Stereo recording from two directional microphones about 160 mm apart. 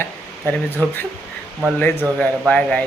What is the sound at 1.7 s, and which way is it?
Speech, 15° left (ahead or behind).